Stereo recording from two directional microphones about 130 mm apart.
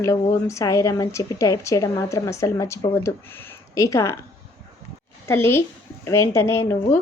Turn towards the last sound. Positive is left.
turn(degrees=20)  # may be behind; listen again after turning